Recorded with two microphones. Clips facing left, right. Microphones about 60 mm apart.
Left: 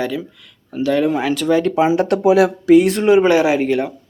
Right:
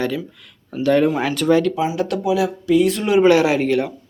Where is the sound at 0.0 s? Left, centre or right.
Centre.